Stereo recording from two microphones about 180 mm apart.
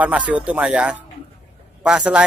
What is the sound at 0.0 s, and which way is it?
A man's voice, 10° right (ahead or behind).